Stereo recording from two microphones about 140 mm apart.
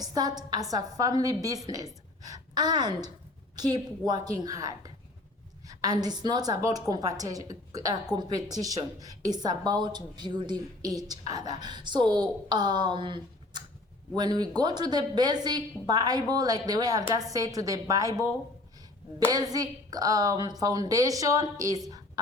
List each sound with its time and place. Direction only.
0.0 s a woman's voice: 30° right (ahead or behind)
19.3 s a woman's voice: 25° right (ahead or behind)
21.8 s a sound: 25° right (ahead or behind)